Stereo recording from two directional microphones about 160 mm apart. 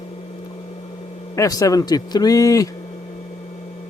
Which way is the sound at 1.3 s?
20° left (ahead or behind).